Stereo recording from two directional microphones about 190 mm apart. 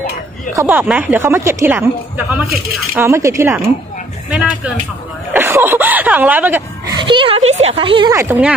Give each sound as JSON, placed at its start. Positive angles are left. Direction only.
{"t": 0.6, "sound": "a woman's voice", "side_deg": -10}
{"t": 5.3, "sound": "a woman's voice", "side_deg": -10}
{"t": 7.0, "sound": "speech", "side_deg": -25}
{"t": 8.1, "sound": "a woman's voice", "side_deg": -15}